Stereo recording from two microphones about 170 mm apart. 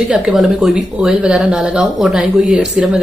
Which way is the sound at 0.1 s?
5° right (ahead or behind).